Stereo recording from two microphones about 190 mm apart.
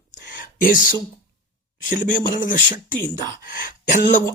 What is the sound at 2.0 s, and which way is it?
Speech, 45° left (ahead or behind).